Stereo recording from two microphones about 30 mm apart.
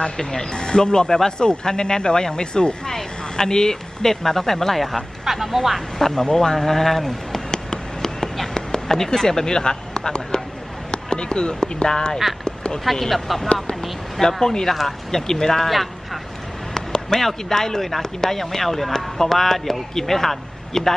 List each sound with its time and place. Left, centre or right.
0.2 s speech: centre
2.9 s speech: centre
5.2 s speech: centre
5.9 s speech: centre
6.3 s a sound: centre
8.5 s speech: centre
12.4 s a sound: left
13.0 s speech: centre
14.2 s speech: left
14.7 s speech: centre
15.7 s a sound: centre
16.7 s a sound: centre
17.5 s speech: centre